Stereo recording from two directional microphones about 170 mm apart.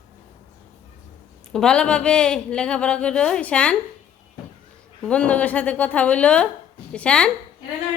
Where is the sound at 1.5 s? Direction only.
5° left (ahead or behind).